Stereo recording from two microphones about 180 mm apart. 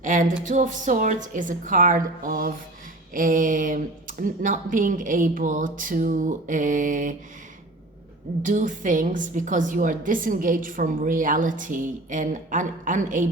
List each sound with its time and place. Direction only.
0.0 s a woman's voice: 45° right (ahead or behind)
8.4 s a woman's voice: 45° right (ahead or behind)